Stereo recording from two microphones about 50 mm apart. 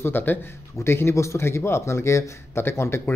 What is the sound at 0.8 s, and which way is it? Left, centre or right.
Speech, left.